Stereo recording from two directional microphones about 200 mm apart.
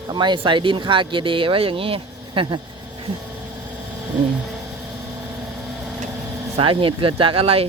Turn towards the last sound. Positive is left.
turn(degrees=-30)  # may be behind; listen again after turning